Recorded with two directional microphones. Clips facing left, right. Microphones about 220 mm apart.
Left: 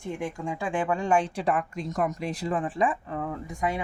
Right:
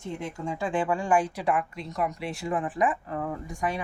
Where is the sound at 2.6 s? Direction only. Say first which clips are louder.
Even; 30° left (ahead or behind).